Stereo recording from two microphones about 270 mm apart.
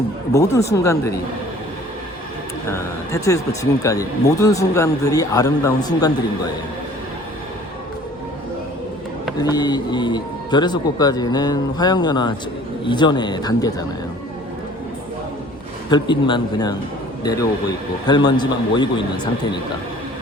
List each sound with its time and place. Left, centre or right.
0.3 s speech: centre
2.6 s speech: centre
9.4 s speech: centre
15.9 s speech: centre
18.0 s speech: centre